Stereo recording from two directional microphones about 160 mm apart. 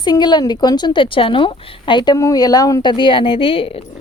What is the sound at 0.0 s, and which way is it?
A woman's voice, 25° left (ahead or behind).